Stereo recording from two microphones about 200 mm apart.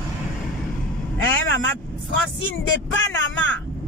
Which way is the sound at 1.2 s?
70° left (ahead or behind).